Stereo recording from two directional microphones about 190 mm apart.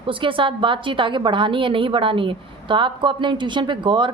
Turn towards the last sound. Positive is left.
turn(degrees=-25)  # may be behind; listen again after turning